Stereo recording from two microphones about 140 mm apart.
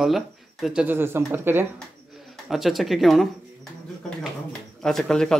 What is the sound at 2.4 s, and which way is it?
Speech, centre (ahead or behind).